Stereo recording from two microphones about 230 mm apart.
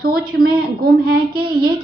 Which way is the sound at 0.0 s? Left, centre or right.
Right.